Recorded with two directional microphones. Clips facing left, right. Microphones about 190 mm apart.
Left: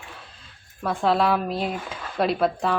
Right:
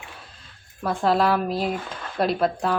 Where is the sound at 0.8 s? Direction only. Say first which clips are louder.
Right 1 dB; centre (ahead or behind).